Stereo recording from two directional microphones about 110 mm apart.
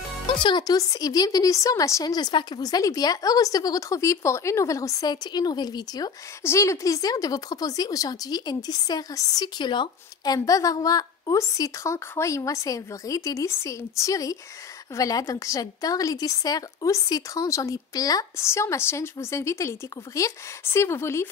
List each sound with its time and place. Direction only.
0.3 s a woman's voice: 45° left (ahead or behind); by 5.1 s 30° left (ahead or behind)
5.1 s a woman's voice: 40° left (ahead or behind)
6.4 s a woman's voice: 25° left (ahead or behind)